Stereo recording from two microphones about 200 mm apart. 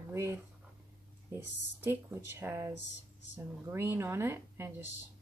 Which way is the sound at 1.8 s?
10° right (ahead or behind).